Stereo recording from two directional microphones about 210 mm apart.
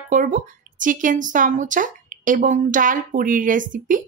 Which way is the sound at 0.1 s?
40° right (ahead or behind).